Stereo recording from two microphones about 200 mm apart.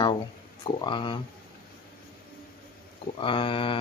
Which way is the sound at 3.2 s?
25° left (ahead or behind).